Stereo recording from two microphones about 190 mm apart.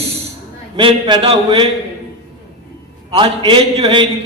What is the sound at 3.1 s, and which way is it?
Speech, 30° right (ahead or behind).